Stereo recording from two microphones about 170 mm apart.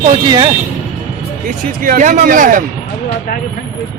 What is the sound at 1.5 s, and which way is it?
Speech, 50° right (ahead or behind).